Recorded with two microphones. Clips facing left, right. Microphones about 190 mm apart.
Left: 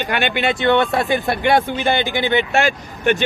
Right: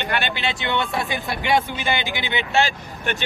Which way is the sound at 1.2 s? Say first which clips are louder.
Left 5 dB; 55° left (ahead or behind).